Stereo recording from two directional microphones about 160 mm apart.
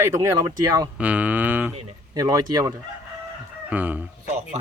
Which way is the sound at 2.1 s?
20° right (ahead or behind).